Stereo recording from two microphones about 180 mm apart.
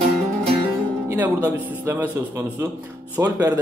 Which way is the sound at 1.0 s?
10° right (ahead or behind).